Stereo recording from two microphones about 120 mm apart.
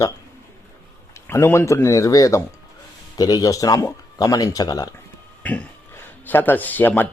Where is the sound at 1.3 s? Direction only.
20° left (ahead or behind).